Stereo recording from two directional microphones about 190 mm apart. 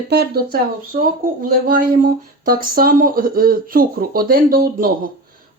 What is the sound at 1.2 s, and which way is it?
Speech, 50° right (ahead or behind).